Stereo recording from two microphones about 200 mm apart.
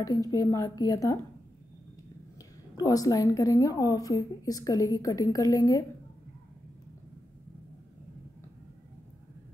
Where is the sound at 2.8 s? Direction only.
15° left (ahead or behind).